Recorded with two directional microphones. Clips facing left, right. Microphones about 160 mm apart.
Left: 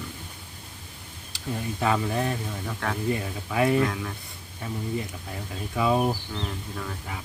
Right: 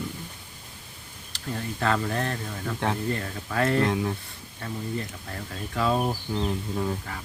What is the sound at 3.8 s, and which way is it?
Speech, 25° right (ahead or behind).